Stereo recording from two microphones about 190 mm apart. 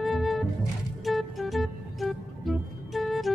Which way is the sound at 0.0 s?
Centre (ahead or behind).